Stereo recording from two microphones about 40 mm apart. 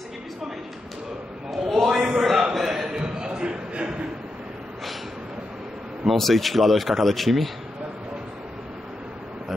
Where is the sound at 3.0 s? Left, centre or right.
Centre.